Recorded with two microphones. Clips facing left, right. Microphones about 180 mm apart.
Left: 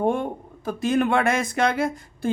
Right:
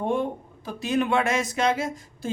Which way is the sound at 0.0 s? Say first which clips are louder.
Left 2 dB; 50° left (ahead or behind).